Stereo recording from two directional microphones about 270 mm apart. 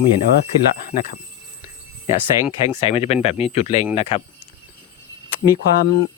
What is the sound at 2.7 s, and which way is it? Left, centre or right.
Speech, left.